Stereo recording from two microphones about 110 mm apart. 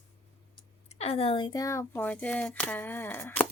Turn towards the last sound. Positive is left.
turn(degrees=20)  # may be behind; listen again after turning